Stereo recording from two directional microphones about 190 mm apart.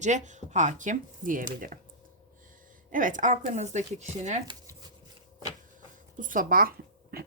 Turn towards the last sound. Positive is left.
turn(degrees=-50)  # may be behind; listen again after turning